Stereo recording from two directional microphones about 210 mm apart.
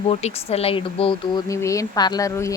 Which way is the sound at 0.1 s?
30° left (ahead or behind).